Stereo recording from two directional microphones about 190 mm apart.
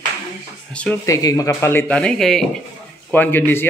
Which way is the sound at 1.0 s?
20° left (ahead or behind).